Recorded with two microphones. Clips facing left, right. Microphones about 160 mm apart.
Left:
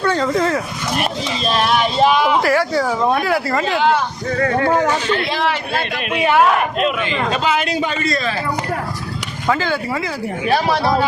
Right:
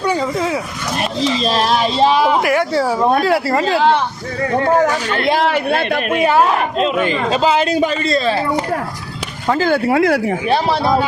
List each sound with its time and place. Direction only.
0.0 s speech: 10° right (ahead or behind)
1.5 s speech: 35° right (ahead or behind)
2.4 s speech: 20° right (ahead or behind)
5.1 s a man's voice: 50° right (ahead or behind); by 7.7 s 30° right (ahead or behind)
7.7 s a man's voice: 45° right (ahead or behind)
8.0 s speech: 25° right (ahead or behind)
9.6 s a man's voice: 45° right (ahead or behind)
9.8 s speech: 65° right (ahead or behind)